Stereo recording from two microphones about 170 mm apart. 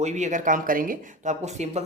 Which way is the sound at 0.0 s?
45° right (ahead or behind).